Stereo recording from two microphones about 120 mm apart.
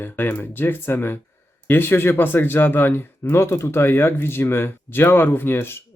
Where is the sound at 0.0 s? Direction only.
15° left (ahead or behind).